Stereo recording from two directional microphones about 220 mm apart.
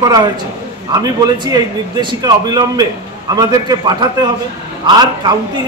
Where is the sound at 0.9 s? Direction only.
15° right (ahead or behind).